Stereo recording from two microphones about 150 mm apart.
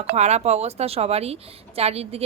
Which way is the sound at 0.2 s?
50° right (ahead or behind).